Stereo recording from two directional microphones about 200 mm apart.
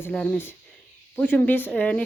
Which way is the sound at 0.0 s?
5° left (ahead or behind).